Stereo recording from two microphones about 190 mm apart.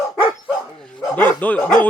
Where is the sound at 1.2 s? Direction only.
10° left (ahead or behind).